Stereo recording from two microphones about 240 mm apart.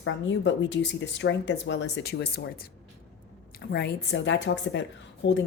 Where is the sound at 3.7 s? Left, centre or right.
Left.